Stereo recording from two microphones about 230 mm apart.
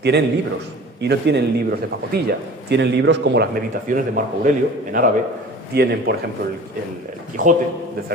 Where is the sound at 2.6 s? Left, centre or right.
Right.